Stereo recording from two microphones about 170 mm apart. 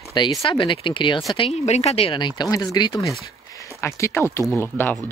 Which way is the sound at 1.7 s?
40° left (ahead or behind).